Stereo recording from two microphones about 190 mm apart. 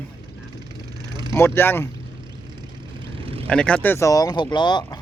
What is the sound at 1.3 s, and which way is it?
Speech, 10° left (ahead or behind).